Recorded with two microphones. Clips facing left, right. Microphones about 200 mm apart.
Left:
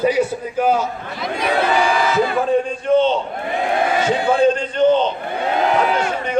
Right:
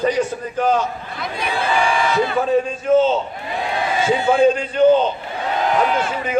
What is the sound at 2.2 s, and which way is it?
A man's voice, centre (ahead or behind).